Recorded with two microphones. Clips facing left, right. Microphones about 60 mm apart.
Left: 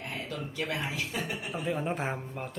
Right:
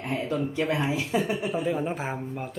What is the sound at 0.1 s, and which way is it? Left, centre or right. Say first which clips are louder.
Speech: right 12 dB; right.